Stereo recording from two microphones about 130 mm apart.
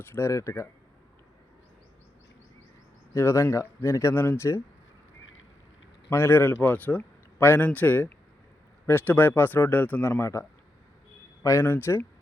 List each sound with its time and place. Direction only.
0.0 s speech: 20° left (ahead or behind)
3.2 s speech: 20° left (ahead or behind)
6.1 s speech: 20° left (ahead or behind)
11.4 s speech: 20° left (ahead or behind)